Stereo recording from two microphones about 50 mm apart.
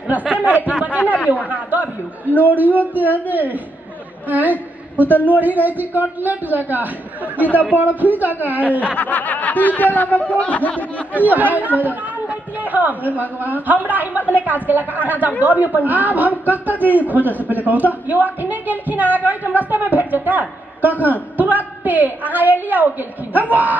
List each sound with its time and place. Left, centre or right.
0.3 s a sound: right
1.5 s a man's voice: right
2.2 s speech: left
2.5 s speech: right
8.6 s speech: left
11.1 s a man's voice: right